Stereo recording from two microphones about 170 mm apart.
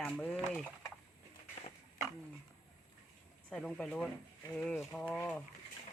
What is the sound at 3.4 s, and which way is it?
Speech, 5° left (ahead or behind).